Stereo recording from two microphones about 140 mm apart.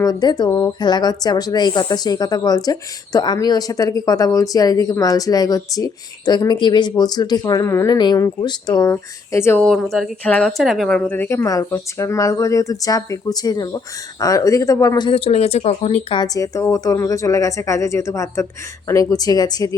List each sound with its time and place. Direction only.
0.0 s speech: 25° left (ahead or behind)
8.9 s speech: 20° left (ahead or behind)
9.6 s speech: centre (ahead or behind)
11.2 s speech: 20° left (ahead or behind); by 16.1 s 50° left (ahead or behind)
16.1 s speech: 25° left (ahead or behind)